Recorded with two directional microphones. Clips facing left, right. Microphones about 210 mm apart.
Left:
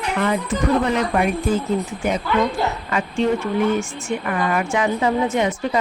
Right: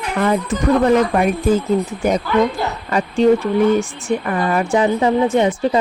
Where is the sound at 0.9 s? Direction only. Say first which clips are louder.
Right 4 dB; 45° right (ahead or behind).